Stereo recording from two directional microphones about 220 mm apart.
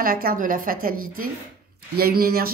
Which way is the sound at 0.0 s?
40° right (ahead or behind).